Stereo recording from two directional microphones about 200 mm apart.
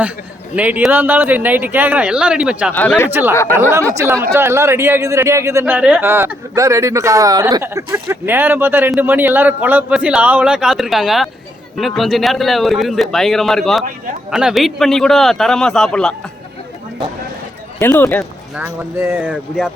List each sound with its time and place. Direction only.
0.5 s speech: 5° right (ahead or behind)
2.7 s speech: 10° left (ahead or behind)
3.1 s speech: 10° right (ahead or behind)
17.7 s speech: 10° left (ahead or behind)
18.5 s speech: 5° right (ahead or behind)